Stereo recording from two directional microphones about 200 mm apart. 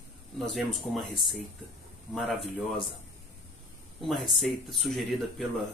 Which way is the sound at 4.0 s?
Centre (ahead or behind).